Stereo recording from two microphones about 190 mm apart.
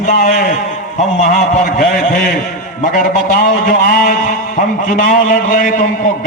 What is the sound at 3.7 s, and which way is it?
A man's voice, 50° left (ahead or behind).